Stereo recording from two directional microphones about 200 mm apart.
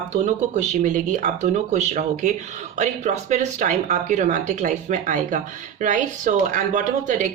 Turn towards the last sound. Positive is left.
turn(degrees=-40)  # may be behind; listen again after turning